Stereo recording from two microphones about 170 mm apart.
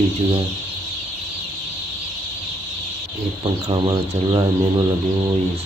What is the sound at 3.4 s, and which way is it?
Speech, 25° right (ahead or behind).